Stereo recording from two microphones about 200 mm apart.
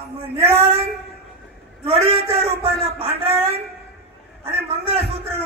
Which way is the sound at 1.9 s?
30° right (ahead or behind).